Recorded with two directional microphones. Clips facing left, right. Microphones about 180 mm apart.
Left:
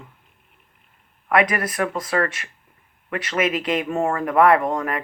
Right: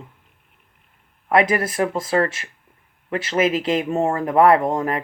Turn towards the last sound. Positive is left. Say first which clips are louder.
# right 2 dB
turn(degrees=-25)  # may be behind; listen again after turning